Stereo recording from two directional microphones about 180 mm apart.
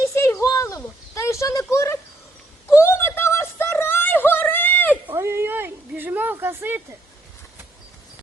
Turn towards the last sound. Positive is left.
turn(degrees=-15)  # may be behind; listen again after turning